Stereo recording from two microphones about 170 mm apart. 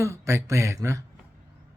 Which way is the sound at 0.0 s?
15° right (ahead or behind).